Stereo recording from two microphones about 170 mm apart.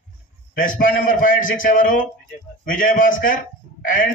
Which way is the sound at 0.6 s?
55° left (ahead or behind).